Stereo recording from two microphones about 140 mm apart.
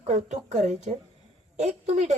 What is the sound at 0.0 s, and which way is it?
Speech, 60° right (ahead or behind).